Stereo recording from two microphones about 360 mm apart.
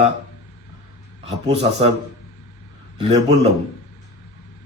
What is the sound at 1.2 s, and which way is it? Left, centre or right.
Speech, centre.